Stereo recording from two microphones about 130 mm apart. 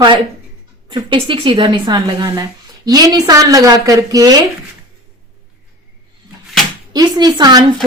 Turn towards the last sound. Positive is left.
turn(degrees=-30)  # may be behind; listen again after turning